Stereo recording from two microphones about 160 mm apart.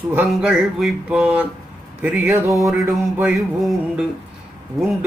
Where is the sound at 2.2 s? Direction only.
15° right (ahead or behind).